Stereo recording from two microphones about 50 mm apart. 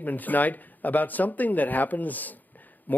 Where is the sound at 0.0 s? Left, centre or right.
Left.